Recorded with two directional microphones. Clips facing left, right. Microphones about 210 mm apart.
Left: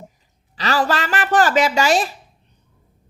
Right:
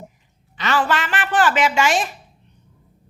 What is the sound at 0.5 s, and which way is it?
A woman's voice, 35° left (ahead or behind).